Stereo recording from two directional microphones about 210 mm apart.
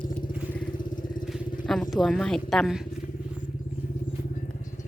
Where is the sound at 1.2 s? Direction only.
Centre (ahead or behind).